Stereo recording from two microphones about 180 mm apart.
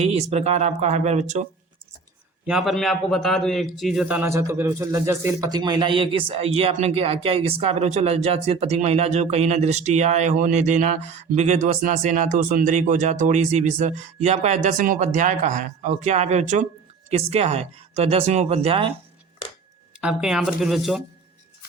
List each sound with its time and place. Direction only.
0.0 s a man's voice: 35° right (ahead or behind)
2.5 s a man's voice: centre (ahead or behind); by 18.9 s 30° right (ahead or behind)
20.0 s speech: 5° right (ahead or behind)